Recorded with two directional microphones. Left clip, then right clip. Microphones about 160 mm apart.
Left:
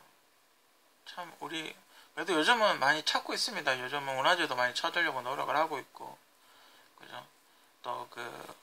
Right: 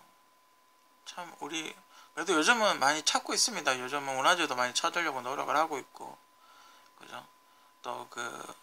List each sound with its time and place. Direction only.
1.0 s speech: 25° right (ahead or behind)